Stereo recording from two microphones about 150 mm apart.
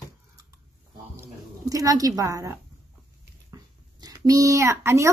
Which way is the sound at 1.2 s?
25° right (ahead or behind).